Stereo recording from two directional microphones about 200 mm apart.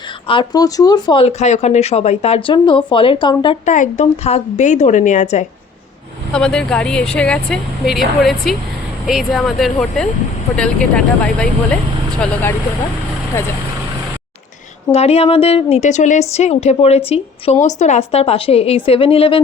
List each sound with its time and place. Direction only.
0.3 s speech: 20° left (ahead or behind)
3.7 s a woman's voice: 35° left (ahead or behind)
6.3 s speech: 5° left (ahead or behind)
14.9 s a woman's voice: 30° left (ahead or behind)